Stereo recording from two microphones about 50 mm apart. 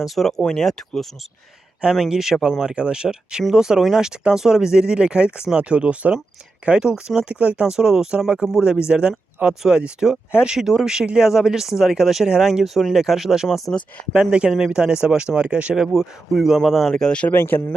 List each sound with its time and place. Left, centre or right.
0.0 s speech: centre
2.0 s speech: centre; by 7.7 s right
7.7 s speech: centre
14.1 s speech: centre
15.7 s speech: centre
16.9 s speech: centre
17.2 s speech: left